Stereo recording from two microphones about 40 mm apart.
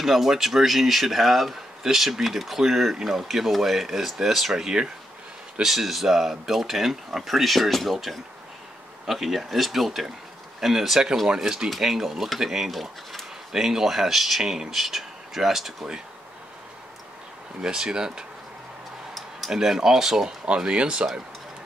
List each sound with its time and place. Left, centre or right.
0.0 s speech: centre
17.6 s speech: centre
19.5 s speech: centre; by 21.1 s right